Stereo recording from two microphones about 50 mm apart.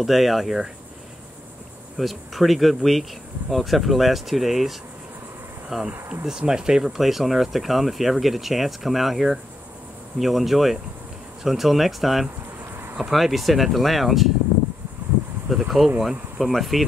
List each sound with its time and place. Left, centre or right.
0.0 s speech: centre
2.0 s speech: centre
15.0 s a sound: right
15.5 s speech: centre